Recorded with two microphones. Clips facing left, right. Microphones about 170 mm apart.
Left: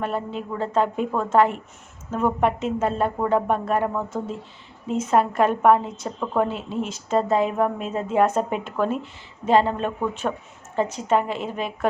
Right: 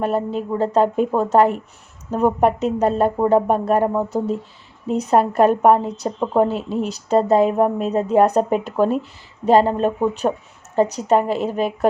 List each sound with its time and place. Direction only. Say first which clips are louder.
0.0 s speech: right 6 dB; 40° right (ahead or behind)